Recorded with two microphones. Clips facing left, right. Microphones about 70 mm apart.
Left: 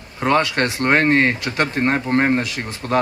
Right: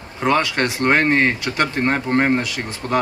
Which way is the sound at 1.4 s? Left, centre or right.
Left.